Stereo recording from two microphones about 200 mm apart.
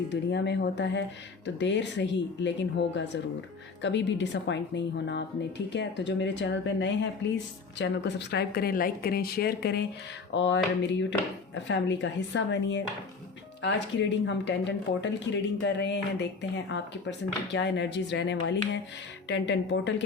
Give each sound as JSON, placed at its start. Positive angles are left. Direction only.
{"t": 0.1, "sound": "speech", "side_deg": 60}
{"t": 10.3, "sound": "speech", "side_deg": 65}